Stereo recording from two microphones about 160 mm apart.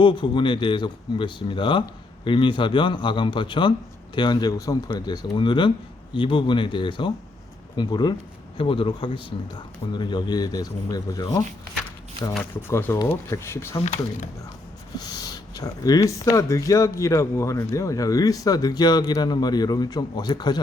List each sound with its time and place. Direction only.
0.0 s speech: 30° left (ahead or behind)
12.4 s speech: 15° left (ahead or behind)
13.8 s speech: 45° left (ahead or behind)
14.9 s speech: 25° left (ahead or behind)